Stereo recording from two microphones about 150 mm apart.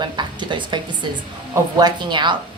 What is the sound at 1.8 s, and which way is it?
Speech, 30° right (ahead or behind).